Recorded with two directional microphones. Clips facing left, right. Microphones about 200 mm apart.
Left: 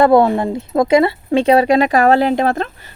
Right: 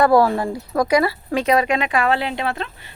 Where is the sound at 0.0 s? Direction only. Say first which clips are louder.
Left 4 dB; 25° left (ahead or behind).